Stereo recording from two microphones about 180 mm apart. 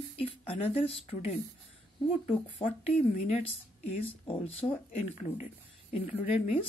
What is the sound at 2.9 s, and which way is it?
Speech, 35° left (ahead or behind).